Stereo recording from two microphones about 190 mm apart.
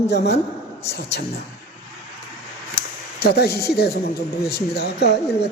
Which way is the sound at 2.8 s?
55° left (ahead or behind).